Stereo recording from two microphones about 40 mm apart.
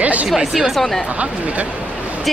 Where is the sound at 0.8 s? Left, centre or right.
Centre.